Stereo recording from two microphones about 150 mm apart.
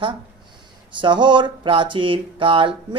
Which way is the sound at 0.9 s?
30° right (ahead or behind).